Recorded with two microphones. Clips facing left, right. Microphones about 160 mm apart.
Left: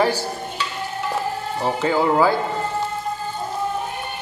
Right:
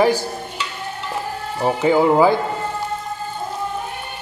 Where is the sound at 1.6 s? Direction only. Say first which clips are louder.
Right 5 dB; 15° right (ahead or behind).